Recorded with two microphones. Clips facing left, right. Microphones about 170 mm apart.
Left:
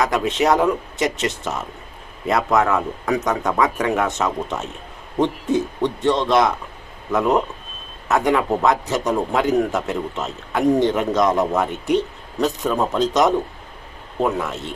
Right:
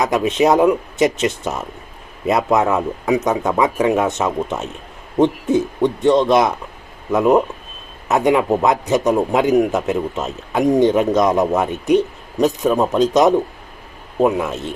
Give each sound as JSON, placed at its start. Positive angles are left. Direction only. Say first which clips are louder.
{"t": 0.0, "sound": "speech", "louder": "right 3 dB", "side_deg": -20}
{"t": 6.1, "sound": "a man's voice", "louder": "right 3 dB", "side_deg": -20}